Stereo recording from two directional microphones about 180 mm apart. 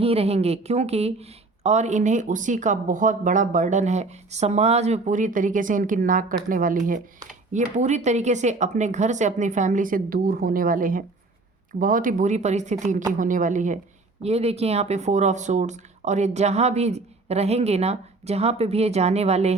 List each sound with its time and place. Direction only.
0.0 s speech: 35° right (ahead or behind)